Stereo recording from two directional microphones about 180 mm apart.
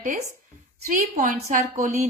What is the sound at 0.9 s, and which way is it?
A woman's voice, 50° right (ahead or behind).